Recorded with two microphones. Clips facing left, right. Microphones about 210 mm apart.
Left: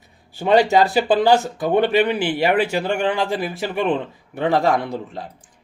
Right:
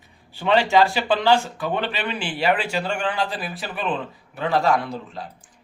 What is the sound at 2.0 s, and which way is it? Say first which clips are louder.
Speech: left 4 dB; 60° left (ahead or behind).